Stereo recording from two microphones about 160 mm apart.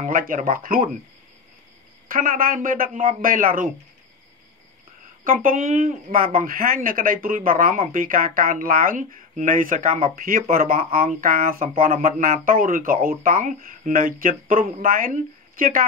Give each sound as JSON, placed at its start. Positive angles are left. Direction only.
{"t": 0.0, "sound": "a woman's voice", "side_deg": -60}
{"t": 2.0, "sound": "a woman's voice", "side_deg": -60}
{"t": 5.2, "sound": "a woman's voice", "side_deg": -60}